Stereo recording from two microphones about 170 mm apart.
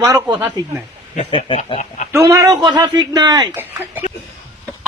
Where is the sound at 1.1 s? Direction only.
35° left (ahead or behind).